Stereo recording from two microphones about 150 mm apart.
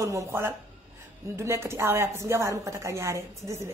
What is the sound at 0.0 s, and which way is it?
A woman's voice, 20° right (ahead or behind).